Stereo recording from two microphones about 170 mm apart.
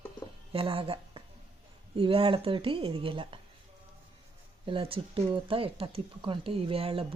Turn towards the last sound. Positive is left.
turn(degrees=-35)  # may be behind; listen again after turning